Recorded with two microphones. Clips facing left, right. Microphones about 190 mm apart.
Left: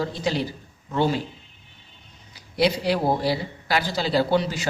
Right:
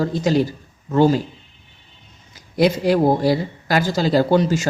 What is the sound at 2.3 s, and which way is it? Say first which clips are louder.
Speech: right 5 dB; 45° right (ahead or behind).